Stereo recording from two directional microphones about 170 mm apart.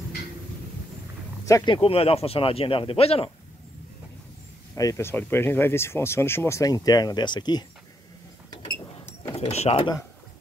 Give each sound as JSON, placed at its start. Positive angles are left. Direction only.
{"t": 1.4, "sound": "speech", "side_deg": 20}
{"t": 1.8, "sound": "speech", "side_deg": 35}
{"t": 4.7, "sound": "speech", "side_deg": 20}
{"t": 9.3, "sound": "speech", "side_deg": 40}